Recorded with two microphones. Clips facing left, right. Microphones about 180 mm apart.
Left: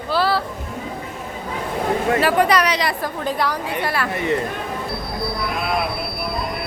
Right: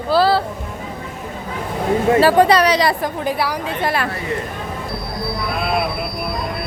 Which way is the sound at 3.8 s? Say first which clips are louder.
Right 4 dB; 20° right (ahead or behind).